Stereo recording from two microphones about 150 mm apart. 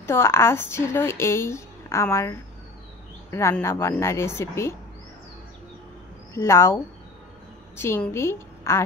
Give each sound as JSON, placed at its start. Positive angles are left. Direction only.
{"t": 0.0, "sound": "speech", "side_deg": 15}
{"t": 6.3, "sound": "a woman's voice", "side_deg": 20}